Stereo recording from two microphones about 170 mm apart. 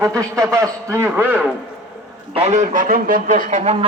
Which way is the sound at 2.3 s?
40° right (ahead or behind).